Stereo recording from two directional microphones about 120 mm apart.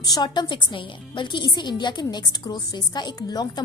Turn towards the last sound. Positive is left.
turn(degrees=35)  # may be behind; listen again after turning